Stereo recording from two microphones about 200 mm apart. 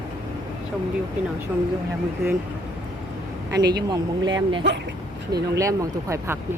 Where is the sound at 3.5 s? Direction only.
20° right (ahead or behind).